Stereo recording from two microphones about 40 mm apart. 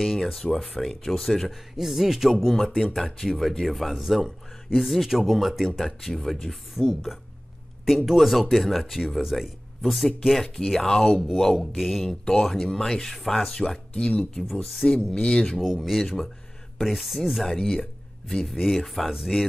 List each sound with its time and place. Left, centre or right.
0.3 s speech: centre
1.8 s speech: centre
6.3 s speech: centre
12.3 s speech: centre
14.5 s speech: centre
15.1 s speech: centre
15.5 s speech: centre
17.5 s speech: centre
18.8 s speech: centre